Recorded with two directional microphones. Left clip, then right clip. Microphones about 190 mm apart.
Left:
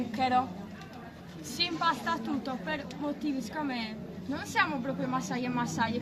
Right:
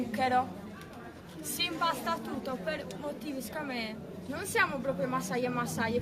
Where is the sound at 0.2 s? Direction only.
15° right (ahead or behind).